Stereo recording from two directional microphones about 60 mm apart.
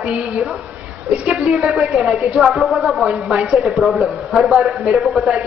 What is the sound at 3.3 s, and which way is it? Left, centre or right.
Speech, right.